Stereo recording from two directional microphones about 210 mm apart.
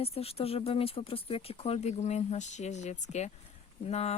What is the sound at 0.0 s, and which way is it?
Speech, 30° left (ahead or behind).